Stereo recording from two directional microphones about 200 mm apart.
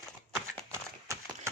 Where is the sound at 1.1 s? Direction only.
15° right (ahead or behind).